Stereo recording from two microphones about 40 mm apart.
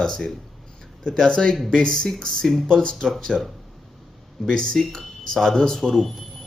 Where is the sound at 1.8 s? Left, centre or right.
Centre.